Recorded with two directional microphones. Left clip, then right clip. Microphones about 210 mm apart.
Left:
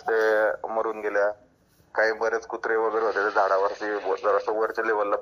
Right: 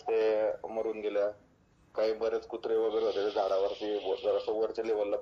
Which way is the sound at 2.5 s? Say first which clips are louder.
Left 5 dB; 20° left (ahead or behind).